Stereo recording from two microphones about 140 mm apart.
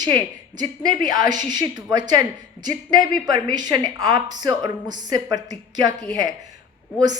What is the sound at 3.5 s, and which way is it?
Speech, 30° right (ahead or behind).